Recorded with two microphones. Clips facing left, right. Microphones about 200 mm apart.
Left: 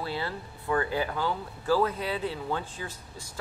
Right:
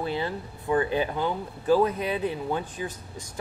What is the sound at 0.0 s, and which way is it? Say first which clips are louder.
Speech: right 4 dB; 20° right (ahead or behind).